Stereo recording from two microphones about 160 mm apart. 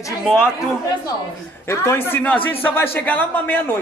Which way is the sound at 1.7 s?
15° left (ahead or behind).